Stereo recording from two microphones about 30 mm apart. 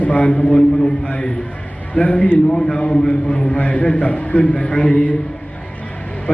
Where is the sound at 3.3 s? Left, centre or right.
Left.